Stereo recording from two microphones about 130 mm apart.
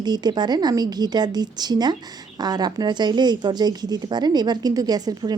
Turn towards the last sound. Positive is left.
turn(degrees=-30)  # may be behind; listen again after turning